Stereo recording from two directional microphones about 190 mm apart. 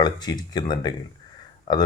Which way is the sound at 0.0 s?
20° left (ahead or behind).